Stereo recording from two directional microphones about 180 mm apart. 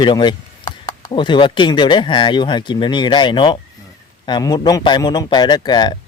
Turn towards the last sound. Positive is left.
turn(degrees=25)  # may be behind; listen again after turning